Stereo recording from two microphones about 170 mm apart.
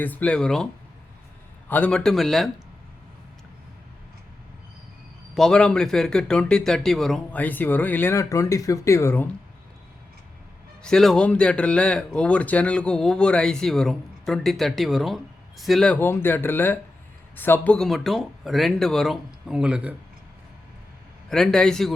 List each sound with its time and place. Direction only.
0.0 s speech: 10° left (ahead or behind)
1.7 s speech: 5° left (ahead or behind)
5.3 s speech: 5° left (ahead or behind)
10.8 s speech: 5° left (ahead or behind)
21.2 s speech: 5° left (ahead or behind)